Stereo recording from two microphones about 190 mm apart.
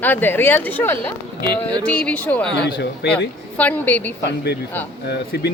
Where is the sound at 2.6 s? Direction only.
60° left (ahead or behind).